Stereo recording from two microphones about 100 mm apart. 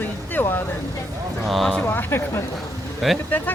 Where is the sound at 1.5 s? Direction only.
Centre (ahead or behind).